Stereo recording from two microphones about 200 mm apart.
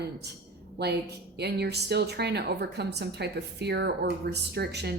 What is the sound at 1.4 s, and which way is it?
A woman's voice, 55° right (ahead or behind).